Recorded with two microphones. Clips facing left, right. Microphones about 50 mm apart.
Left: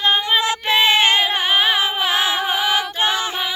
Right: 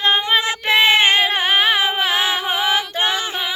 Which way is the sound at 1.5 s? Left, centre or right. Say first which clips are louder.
Right 1 dB; right.